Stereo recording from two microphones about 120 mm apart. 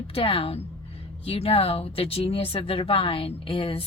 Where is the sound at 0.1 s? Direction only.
50° left (ahead or behind).